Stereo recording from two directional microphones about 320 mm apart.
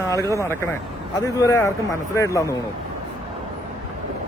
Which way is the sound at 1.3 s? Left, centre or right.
Centre.